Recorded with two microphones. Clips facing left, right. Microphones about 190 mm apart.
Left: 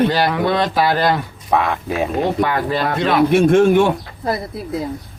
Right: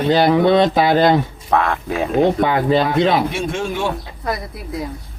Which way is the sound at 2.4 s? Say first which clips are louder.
Right 3 dB; 20° right (ahead or behind).